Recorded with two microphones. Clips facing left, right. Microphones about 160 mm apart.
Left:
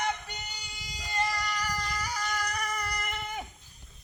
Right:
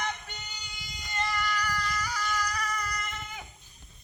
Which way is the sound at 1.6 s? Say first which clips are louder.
Right 1 dB; 40° left (ahead or behind).